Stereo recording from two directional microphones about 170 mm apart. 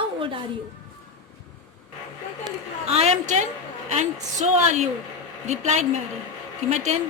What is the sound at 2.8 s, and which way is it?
A woman's voice, 40° right (ahead or behind).